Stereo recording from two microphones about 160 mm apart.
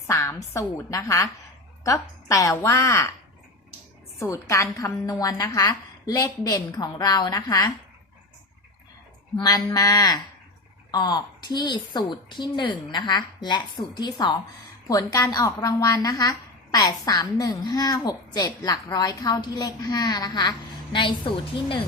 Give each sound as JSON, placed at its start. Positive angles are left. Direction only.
{"t": 0.1, "sound": "a woman's voice", "side_deg": 15}
{"t": 4.2, "sound": "a woman's voice", "side_deg": 20}
{"t": 9.3, "sound": "a woman's voice", "side_deg": 25}